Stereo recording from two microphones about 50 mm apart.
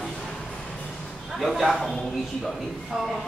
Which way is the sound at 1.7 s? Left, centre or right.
Centre.